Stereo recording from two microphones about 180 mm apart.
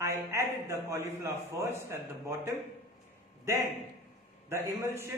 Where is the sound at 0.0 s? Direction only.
15° right (ahead or behind).